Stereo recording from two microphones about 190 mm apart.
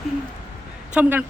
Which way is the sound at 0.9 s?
10° right (ahead or behind).